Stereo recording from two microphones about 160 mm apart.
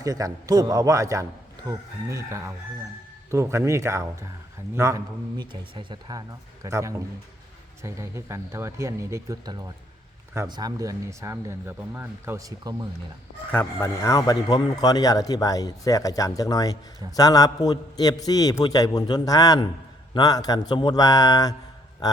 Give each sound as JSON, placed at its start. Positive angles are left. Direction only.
{"t": 0.0, "sound": "a man's voice", "side_deg": -20}
{"t": 13.5, "sound": "a man's voice", "side_deg": 10}
{"t": 22.0, "sound": "a sound", "side_deg": 25}